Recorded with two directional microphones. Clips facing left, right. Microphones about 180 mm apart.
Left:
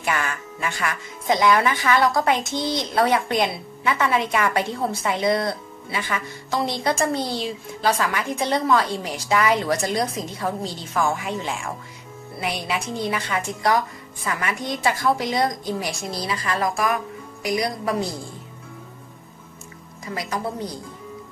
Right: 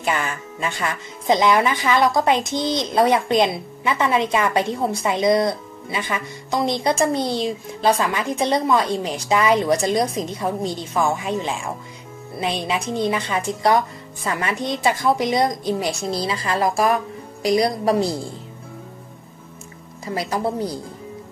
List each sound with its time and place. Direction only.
0.0 s speech: 20° right (ahead or behind)
20.1 s a woman's voice: 30° right (ahead or behind)